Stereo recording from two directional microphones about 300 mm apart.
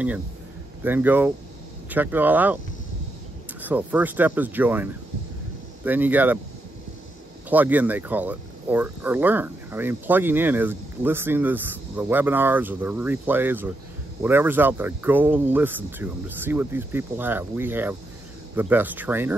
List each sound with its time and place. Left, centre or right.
0.8 s speech: centre
3.6 s speech: centre
5.9 s speech: centre
7.4 s speech: centre